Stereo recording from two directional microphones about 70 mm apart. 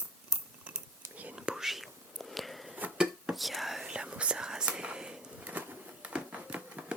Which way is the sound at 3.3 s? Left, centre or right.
Centre.